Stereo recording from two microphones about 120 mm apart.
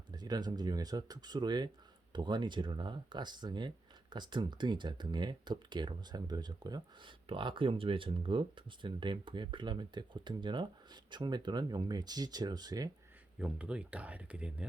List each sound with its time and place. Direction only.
0.1 s speech: 35° right (ahead or behind)
13.4 s speech: 10° right (ahead or behind)